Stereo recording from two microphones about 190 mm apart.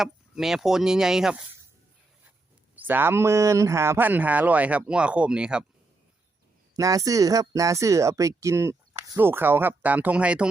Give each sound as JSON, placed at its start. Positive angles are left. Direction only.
{"t": 0.0, "sound": "speech", "side_deg": 0}
{"t": 2.7, "sound": "speech", "side_deg": -10}
{"t": 6.7, "sound": "speech", "side_deg": -15}